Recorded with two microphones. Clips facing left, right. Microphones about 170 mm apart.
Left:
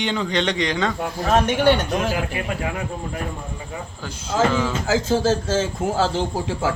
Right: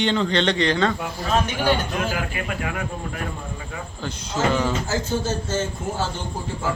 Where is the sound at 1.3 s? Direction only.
70° left (ahead or behind).